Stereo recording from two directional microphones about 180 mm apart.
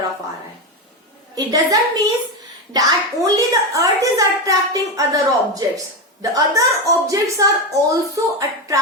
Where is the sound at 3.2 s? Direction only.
20° right (ahead or behind).